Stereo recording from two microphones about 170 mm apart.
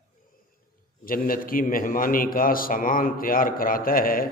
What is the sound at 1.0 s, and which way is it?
A man's voice, 55° left (ahead or behind).